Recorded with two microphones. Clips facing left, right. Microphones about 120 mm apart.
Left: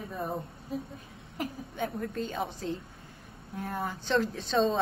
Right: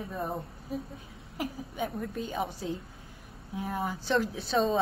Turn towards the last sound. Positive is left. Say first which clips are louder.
# even
turn(degrees=-5)  # may be behind; listen again after turning